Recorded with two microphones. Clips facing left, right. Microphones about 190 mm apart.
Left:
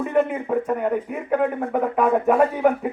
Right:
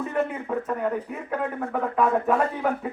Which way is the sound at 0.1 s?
10° left (ahead or behind).